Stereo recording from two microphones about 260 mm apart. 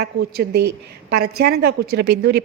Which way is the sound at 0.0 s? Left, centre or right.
Right.